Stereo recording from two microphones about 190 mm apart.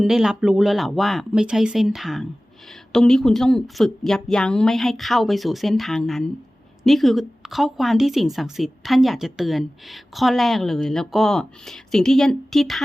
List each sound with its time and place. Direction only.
0.0 s a woman's voice: centre (ahead or behind)